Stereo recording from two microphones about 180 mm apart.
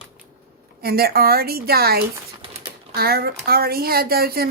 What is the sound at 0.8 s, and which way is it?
A woman's voice, 60° right (ahead or behind).